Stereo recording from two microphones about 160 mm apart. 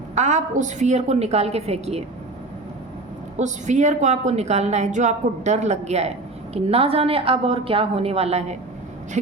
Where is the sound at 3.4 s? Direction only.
50° right (ahead or behind).